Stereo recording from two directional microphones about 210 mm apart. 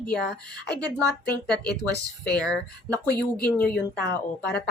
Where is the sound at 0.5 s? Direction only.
15° right (ahead or behind).